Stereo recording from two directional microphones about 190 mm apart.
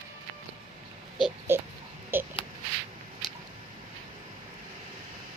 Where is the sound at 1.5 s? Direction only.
15° right (ahead or behind).